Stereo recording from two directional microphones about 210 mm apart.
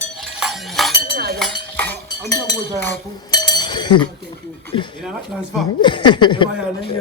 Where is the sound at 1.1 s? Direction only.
50° right (ahead or behind).